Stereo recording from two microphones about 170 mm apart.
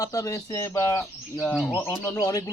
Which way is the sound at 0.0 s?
20° left (ahead or behind).